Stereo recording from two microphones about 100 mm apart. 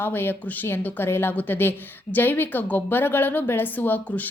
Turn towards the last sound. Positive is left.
turn(degrees=15)  # may be behind; listen again after turning